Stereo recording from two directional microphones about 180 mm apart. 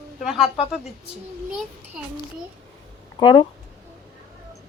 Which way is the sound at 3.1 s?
25° left (ahead or behind).